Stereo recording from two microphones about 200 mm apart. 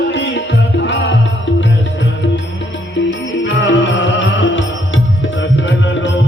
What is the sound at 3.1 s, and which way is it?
Music, 65° left (ahead or behind).